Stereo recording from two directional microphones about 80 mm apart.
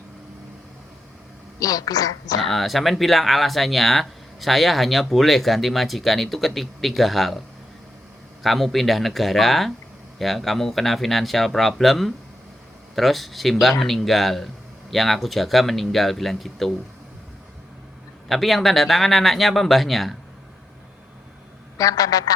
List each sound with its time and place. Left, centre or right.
1.5 s speech: left
2.4 s speech: centre
8.4 s speech: centre
18.3 s speech: centre
21.8 s speech: left